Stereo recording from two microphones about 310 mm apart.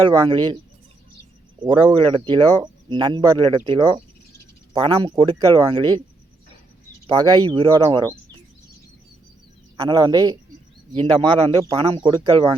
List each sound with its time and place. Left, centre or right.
0.0 s speech: centre
1.6 s speech: centre
7.1 s speech: centre
9.7 s speech: centre